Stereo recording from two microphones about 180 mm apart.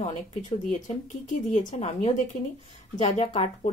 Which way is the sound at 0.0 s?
40° left (ahead or behind).